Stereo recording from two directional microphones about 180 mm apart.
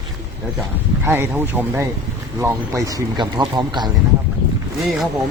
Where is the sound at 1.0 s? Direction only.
10° right (ahead or behind).